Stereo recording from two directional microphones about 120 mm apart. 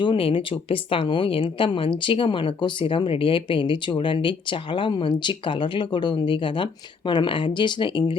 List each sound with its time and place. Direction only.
0.0 s speech: 45° left (ahead or behind)